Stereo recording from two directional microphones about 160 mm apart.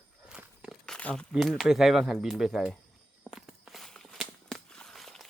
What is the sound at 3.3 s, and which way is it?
Walk, centre (ahead or behind).